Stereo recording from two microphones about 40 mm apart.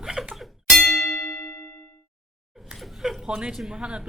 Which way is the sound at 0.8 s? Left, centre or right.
Centre.